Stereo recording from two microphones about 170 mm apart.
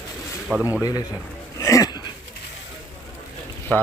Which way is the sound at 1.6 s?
20° left (ahead or behind).